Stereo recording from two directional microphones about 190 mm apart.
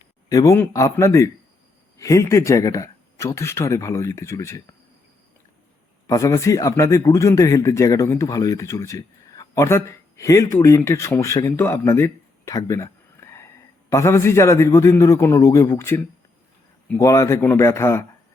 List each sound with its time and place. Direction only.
0.3 s speech: 20° left (ahead or behind)
6.1 s speech: 15° left (ahead or behind)